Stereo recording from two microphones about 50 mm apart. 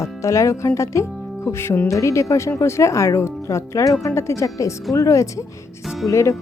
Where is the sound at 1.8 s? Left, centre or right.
Left.